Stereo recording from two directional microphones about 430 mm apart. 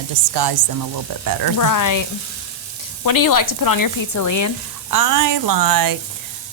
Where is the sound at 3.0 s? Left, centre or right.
Left.